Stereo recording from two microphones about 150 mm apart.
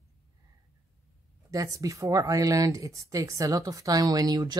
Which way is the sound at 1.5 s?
20° right (ahead or behind).